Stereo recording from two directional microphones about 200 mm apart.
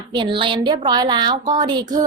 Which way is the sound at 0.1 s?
25° right (ahead or behind).